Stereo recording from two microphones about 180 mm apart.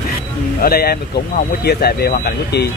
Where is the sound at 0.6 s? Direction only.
55° left (ahead or behind).